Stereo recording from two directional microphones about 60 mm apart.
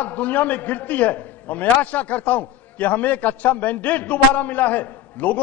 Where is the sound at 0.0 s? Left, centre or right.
Left.